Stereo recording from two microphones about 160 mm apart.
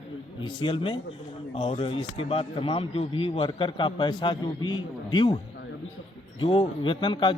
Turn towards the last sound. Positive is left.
turn(degrees=30)  # may be behind; listen again after turning